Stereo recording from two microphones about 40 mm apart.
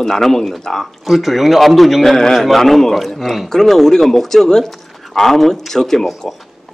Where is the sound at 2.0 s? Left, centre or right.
Centre.